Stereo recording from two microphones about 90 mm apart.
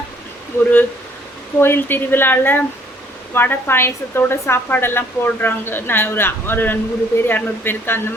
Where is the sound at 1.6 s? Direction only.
25° left (ahead or behind).